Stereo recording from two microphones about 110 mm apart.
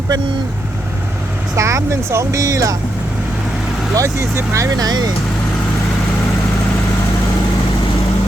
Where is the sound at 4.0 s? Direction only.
25° right (ahead or behind).